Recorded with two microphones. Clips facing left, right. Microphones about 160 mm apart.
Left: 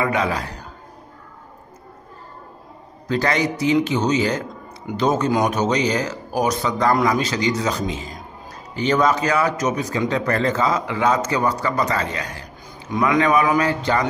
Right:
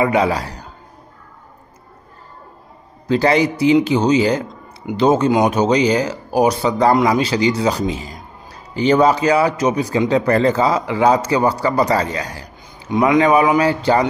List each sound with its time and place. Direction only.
0.0 s a man's voice: 30° right (ahead or behind)
3.1 s a man's voice: 30° right (ahead or behind)
12.9 s a man's voice: 25° right (ahead or behind)